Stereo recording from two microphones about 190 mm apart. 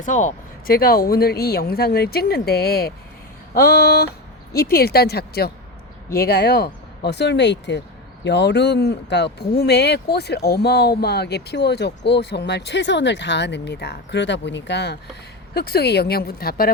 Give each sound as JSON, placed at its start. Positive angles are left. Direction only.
{"t": 0.0, "sound": "speech", "side_deg": 40}